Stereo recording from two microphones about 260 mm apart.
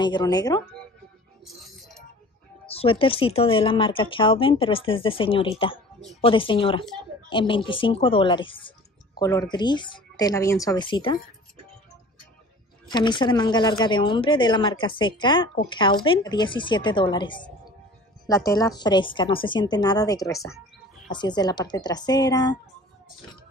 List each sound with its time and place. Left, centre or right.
0.0 s a woman's voice: centre
2.6 s a woman's voice: left
12.9 s a woman's voice: centre